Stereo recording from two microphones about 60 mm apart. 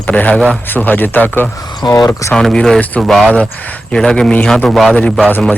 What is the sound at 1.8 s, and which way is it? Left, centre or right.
Speech, left.